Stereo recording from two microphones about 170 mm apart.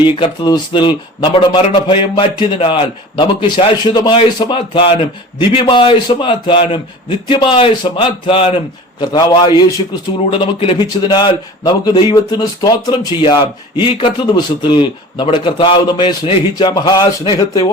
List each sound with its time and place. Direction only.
0.0 s speech: 30° left (ahead or behind)